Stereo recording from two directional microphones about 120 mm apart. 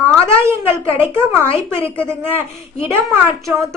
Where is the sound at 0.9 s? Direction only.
20° right (ahead or behind).